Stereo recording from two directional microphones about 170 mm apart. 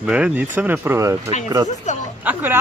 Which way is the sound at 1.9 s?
45° left (ahead or behind).